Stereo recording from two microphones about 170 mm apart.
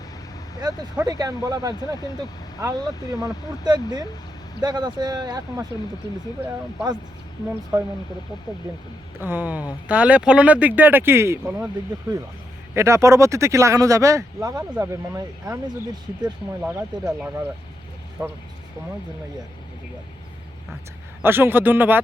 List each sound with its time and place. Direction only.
0.6 s speech: 20° right (ahead or behind)
9.2 s speech: 10° right (ahead or behind)
12.7 s speech: 15° right (ahead or behind)
16.6 s speech: 5° right (ahead or behind)
18.2 s speech: 15° right (ahead or behind)
21.2 s speech: 15° right (ahead or behind)